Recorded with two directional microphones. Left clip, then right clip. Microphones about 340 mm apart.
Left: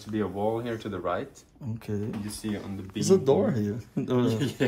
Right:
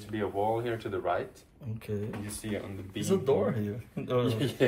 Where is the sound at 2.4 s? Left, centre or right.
Left.